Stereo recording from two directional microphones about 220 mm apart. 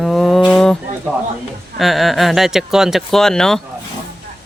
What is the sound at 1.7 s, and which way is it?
Speech, centre (ahead or behind).